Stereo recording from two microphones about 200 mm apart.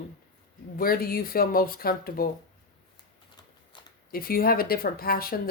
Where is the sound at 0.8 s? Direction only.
45° left (ahead or behind).